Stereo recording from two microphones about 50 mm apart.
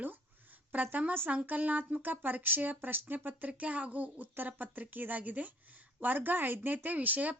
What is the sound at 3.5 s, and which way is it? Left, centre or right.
Speech, right.